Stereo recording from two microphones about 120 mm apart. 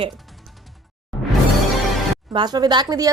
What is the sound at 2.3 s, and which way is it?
Speech, 35° right (ahead or behind).